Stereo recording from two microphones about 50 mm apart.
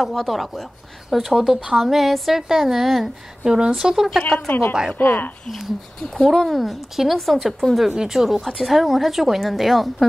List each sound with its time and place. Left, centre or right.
0.0 s a woman's voice: centre
3.5 s speech: centre
4.5 s speech: left
6.0 s a woman's voice: centre